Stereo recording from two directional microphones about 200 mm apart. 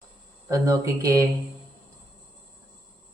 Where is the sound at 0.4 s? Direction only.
15° right (ahead or behind).